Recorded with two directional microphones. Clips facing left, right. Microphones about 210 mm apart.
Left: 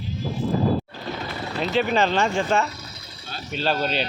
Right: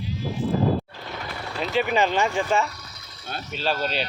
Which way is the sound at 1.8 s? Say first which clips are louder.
Even; 10° right (ahead or behind).